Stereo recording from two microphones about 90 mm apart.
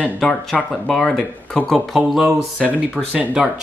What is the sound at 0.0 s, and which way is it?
Speech, 5° left (ahead or behind).